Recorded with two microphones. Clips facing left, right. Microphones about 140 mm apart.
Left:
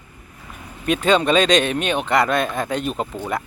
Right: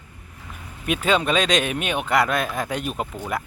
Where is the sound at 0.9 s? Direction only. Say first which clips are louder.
Left 4 dB; 5° right (ahead or behind).